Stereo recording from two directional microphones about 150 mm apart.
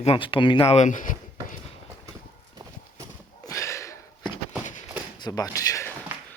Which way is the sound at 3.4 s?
20° left (ahead or behind).